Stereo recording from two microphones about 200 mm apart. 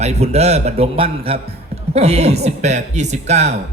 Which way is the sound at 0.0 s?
35° right (ahead or behind).